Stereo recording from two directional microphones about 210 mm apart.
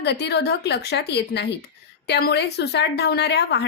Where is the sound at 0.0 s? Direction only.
55° left (ahead or behind).